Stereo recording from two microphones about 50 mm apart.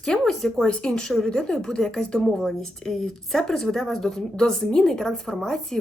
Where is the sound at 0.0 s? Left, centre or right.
Centre.